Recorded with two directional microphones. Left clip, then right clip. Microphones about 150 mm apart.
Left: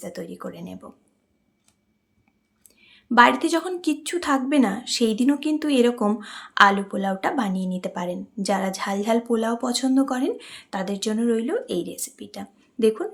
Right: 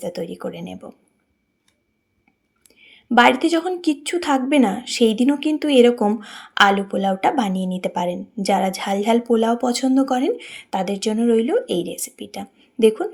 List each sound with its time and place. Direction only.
0.0 s a woman's voice: 20° right (ahead or behind)
2.6 s a sound: 10° right (ahead or behind)
3.2 s a woman's voice: 15° right (ahead or behind)